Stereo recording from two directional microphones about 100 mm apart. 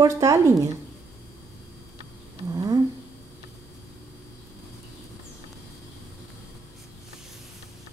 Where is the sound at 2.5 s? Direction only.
35° right (ahead or behind).